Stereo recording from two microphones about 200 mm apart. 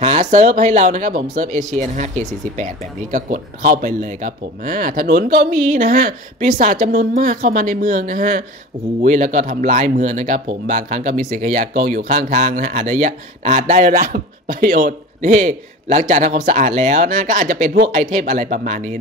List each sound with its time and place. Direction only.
0.0 s speech: 35° right (ahead or behind)